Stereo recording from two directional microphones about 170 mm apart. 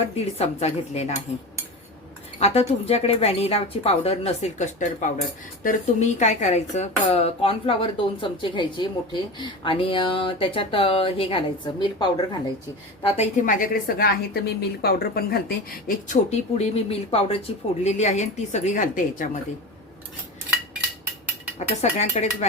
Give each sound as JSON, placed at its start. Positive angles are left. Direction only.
{"t": 0.2, "sound": "speech", "side_deg": 40}
{"t": 2.4, "sound": "speech", "side_deg": 35}
{"t": 13.0, "sound": "a woman's voice", "side_deg": 35}
{"t": 16.0, "sound": "speech", "side_deg": 40}
{"t": 21.6, "sound": "speech", "side_deg": 40}